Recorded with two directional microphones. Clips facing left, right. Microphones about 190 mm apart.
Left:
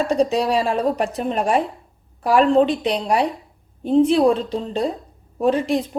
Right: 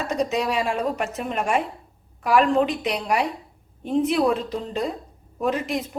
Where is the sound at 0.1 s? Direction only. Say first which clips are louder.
Left 5 dB; 35° left (ahead or behind).